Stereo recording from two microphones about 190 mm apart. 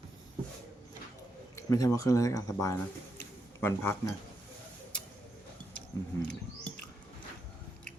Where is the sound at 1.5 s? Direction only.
15° left (ahead or behind).